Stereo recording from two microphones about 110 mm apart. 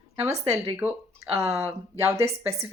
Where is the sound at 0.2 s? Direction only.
25° right (ahead or behind).